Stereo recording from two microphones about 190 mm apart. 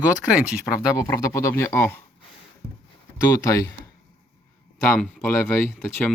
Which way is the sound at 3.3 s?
15° left (ahead or behind).